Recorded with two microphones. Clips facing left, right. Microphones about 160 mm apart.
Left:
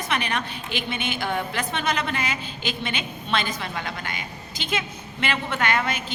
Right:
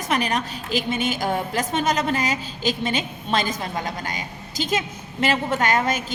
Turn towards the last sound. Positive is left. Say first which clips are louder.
# right 3 dB
turn(degrees=-40)  # may be behind; listen again after turning